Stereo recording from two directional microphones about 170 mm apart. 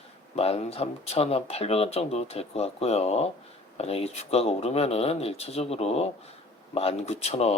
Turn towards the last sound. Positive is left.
turn(degrees=40)  # may be behind; listen again after turning